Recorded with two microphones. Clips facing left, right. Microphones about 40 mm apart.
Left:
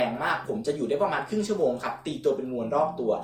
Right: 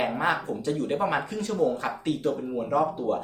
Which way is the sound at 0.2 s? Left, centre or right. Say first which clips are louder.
Right 1 dB; right.